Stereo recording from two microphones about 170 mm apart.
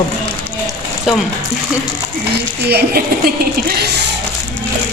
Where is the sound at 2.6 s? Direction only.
65° right (ahead or behind).